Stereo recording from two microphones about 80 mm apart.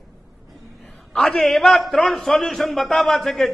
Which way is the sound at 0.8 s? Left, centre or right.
Centre.